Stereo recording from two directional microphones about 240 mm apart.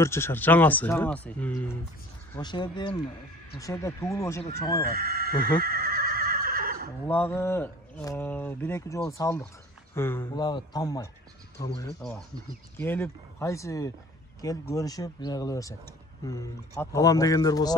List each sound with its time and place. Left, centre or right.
0.0 s speech: centre
2.3 s speech: centre
4.9 s neigh: right
7.1 s speech: centre
12.0 s speech: centre